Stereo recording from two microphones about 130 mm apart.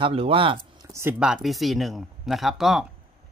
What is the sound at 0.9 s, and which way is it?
Speech, 20° right (ahead or behind).